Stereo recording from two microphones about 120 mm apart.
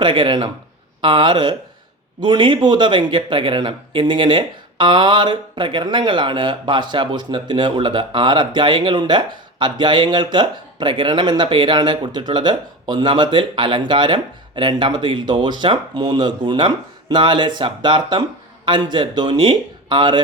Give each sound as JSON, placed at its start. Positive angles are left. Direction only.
{"t": 0.0, "sound": "speech", "side_deg": -45}